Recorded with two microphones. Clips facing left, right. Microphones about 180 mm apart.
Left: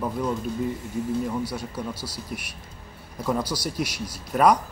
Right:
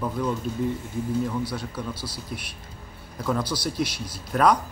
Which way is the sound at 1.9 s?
40° left (ahead or behind).